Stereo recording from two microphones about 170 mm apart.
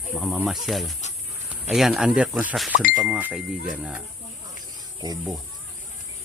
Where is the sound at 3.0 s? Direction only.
10° right (ahead or behind).